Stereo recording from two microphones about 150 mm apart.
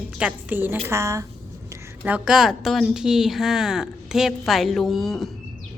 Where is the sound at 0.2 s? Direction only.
10° right (ahead or behind).